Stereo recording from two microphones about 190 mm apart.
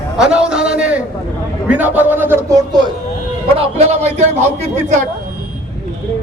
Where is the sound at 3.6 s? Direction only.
35° right (ahead or behind).